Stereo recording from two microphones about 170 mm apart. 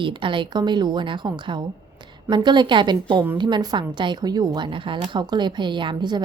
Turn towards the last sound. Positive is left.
turn(degrees=-25)  # may be behind; listen again after turning